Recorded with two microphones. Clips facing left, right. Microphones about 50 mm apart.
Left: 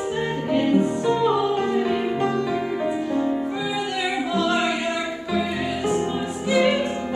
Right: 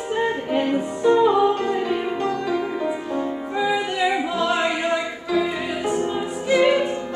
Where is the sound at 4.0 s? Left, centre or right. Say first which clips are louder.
Even; centre.